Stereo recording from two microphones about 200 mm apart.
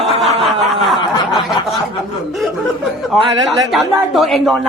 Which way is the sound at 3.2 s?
20° right (ahead or behind).